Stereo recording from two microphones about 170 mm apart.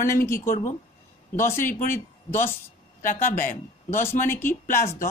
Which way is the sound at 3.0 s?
50° left (ahead or behind).